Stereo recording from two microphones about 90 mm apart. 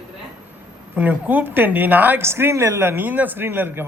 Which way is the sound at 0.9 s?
20° right (ahead or behind).